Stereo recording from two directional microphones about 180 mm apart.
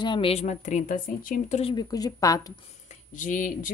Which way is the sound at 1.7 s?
20° left (ahead or behind).